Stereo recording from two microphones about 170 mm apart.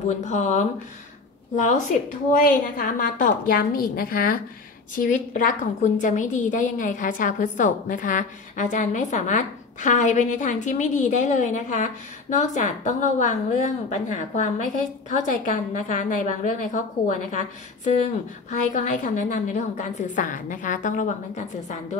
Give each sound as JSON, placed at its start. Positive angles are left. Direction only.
{"t": 0.2, "sound": "a woman's voice", "side_deg": 45}
{"t": 18.5, "sound": "a woman's voice", "side_deg": 45}